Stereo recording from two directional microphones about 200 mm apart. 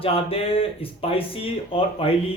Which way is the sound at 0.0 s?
30° left (ahead or behind).